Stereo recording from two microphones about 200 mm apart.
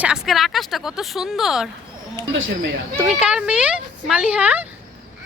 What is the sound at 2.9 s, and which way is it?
Speech, 5° right (ahead or behind).